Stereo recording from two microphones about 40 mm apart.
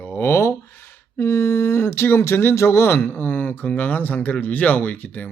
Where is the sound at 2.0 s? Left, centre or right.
Left.